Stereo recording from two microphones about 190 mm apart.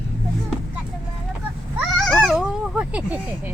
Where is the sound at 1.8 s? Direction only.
Centre (ahead or behind).